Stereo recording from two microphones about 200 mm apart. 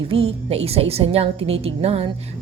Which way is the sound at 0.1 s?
30° right (ahead or behind).